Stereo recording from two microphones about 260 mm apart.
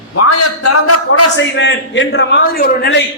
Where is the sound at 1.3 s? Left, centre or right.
Left.